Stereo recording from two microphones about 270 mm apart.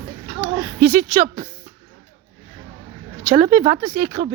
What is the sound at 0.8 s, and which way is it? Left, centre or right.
Speech, right.